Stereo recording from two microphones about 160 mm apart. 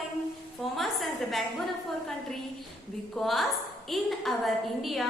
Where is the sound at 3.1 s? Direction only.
Centre (ahead or behind).